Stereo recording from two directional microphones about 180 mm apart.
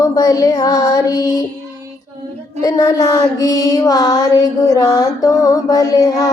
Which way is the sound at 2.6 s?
20° left (ahead or behind).